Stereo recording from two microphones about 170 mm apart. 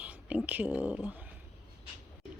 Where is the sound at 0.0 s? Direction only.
10° right (ahead or behind).